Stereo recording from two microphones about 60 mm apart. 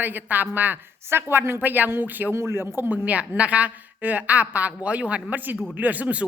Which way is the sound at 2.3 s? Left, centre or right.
Right.